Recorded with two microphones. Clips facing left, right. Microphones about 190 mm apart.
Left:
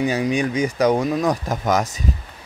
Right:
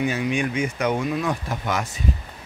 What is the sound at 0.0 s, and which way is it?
Speech, 35° left (ahead or behind).